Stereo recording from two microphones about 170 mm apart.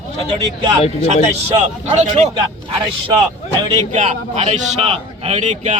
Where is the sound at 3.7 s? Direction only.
45° right (ahead or behind).